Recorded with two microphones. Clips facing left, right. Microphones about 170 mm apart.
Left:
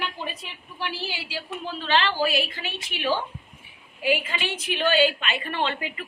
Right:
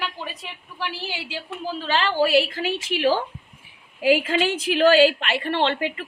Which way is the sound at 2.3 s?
85° right.